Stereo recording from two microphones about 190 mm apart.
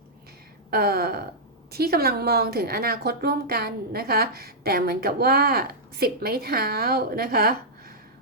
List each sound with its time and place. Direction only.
0.7 s a woman's voice: 55° right (ahead or behind)